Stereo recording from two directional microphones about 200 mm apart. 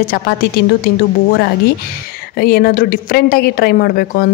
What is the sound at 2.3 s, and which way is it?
A woman's voice, 50° left (ahead or behind).